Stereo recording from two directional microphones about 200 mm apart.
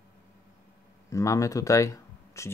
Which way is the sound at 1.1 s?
15° left (ahead or behind).